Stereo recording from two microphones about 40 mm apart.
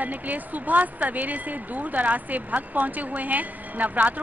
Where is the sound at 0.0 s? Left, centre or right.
Right.